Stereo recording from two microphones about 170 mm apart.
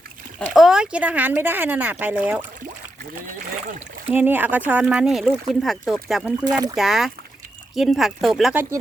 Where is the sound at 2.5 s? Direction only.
55° right (ahead or behind).